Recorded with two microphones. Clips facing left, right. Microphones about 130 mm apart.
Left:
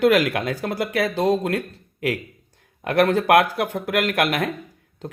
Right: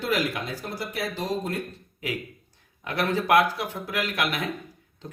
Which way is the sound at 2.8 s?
55° left (ahead or behind).